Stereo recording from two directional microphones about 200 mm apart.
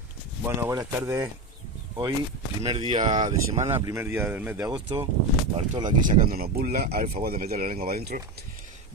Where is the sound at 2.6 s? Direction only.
30° right (ahead or behind).